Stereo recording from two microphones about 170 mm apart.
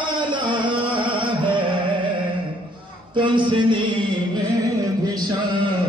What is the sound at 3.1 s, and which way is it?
Mantra, 30° right (ahead or behind).